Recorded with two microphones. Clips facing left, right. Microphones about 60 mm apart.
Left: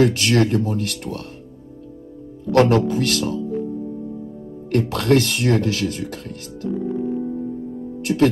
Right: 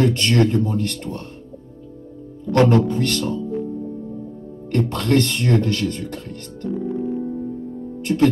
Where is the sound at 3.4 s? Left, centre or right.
Centre.